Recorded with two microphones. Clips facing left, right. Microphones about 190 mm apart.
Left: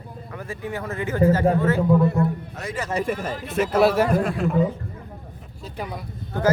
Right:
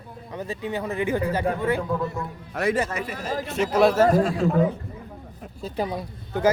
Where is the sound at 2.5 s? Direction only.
60° right (ahead or behind).